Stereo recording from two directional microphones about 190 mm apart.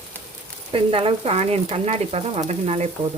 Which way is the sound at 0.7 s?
30° right (ahead or behind).